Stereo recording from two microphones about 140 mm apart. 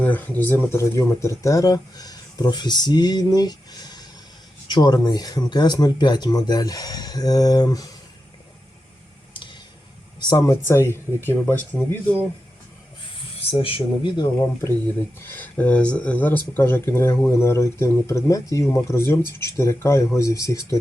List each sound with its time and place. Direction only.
0.0 s speech: 10° left (ahead or behind)
10.2 s speech: 30° left (ahead or behind); by 12.1 s 10° left (ahead or behind)
13.5 s speech: 40° left (ahead or behind)
15.2 s speech: 15° left (ahead or behind)